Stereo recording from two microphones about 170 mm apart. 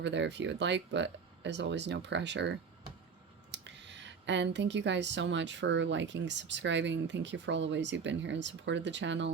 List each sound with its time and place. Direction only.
0.0 s speech: 90° right
3.5 s speech: 90° right